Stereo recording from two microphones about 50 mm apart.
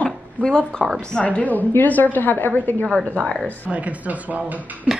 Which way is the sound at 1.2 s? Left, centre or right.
Left.